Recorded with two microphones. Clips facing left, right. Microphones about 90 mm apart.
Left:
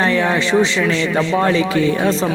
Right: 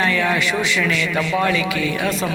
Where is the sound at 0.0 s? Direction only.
25° left (ahead or behind).